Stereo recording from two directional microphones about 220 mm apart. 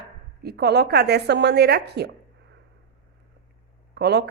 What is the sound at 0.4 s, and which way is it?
A woman's voice, 50° right (ahead or behind).